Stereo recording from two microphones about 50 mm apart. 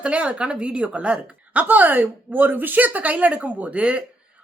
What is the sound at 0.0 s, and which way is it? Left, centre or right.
A woman's voice, right.